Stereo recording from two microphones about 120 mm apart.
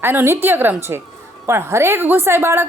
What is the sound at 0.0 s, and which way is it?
A woman's voice, 15° right (ahead or behind).